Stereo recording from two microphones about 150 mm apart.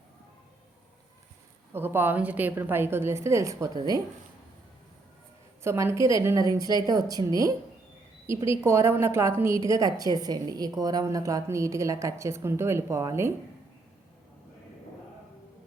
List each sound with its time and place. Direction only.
1.7 s a woman's voice: 15° right (ahead or behind)
5.6 s a woman's voice: 20° right (ahead or behind)